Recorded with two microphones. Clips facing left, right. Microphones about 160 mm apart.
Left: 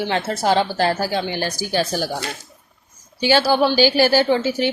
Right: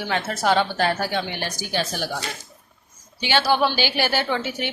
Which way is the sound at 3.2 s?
35° left (ahead or behind).